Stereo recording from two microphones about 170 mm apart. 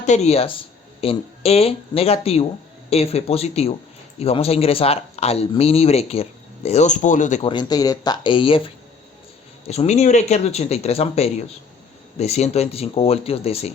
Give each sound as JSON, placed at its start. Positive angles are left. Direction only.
{"t": 0.0, "sound": "speech", "side_deg": 40}
{"t": 7.4, "sound": "speech", "side_deg": 25}